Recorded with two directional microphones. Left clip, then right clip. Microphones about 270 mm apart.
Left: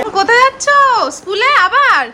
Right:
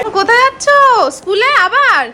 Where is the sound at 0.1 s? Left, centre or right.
Centre.